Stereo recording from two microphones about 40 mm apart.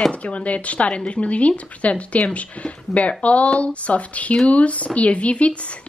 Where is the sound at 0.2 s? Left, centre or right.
Left.